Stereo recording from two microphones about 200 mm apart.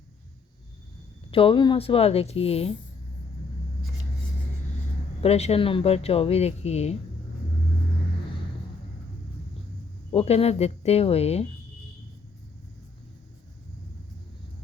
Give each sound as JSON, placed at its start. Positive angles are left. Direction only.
{"t": 1.3, "sound": "a woman's voice", "side_deg": 25}
{"t": 5.2, "sound": "speech", "side_deg": 30}
{"t": 10.1, "sound": "speech", "side_deg": 30}